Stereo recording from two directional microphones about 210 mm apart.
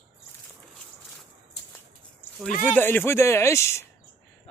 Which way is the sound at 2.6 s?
10° left (ahead or behind).